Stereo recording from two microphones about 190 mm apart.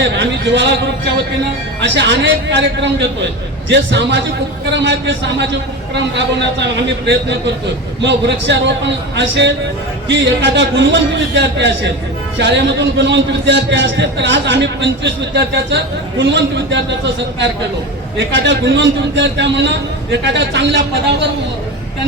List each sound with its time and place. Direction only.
0.0 s a man's voice: 70° right (ahead or behind)
1.8 s a man's voice: 70° right (ahead or behind)
18.2 s a man's voice: 65° right (ahead or behind)